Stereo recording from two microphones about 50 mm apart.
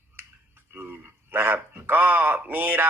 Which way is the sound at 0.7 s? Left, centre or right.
Right.